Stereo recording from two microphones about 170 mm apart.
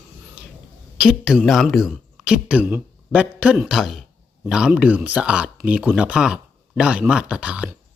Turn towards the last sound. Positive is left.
turn(degrees=-5)  # may be behind; listen again after turning